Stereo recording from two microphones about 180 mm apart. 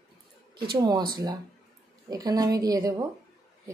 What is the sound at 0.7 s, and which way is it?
Speech, 20° right (ahead or behind).